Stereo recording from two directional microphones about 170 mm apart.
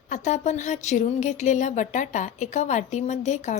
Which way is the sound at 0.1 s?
45° left (ahead or behind).